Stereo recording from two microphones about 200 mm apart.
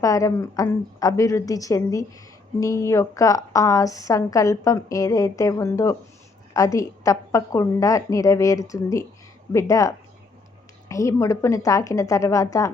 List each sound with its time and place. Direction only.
0.0 s a woman's voice: 15° left (ahead or behind)